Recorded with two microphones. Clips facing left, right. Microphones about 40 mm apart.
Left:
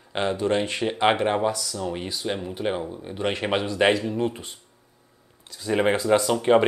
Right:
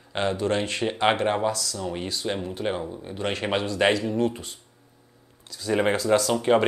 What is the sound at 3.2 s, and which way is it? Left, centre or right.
Speech, centre.